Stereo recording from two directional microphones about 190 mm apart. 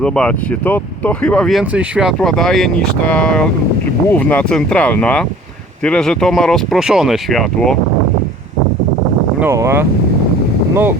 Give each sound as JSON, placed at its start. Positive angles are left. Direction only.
{"t": 0.0, "sound": "speech", "side_deg": 5}
{"t": 9.4, "sound": "speech", "side_deg": -15}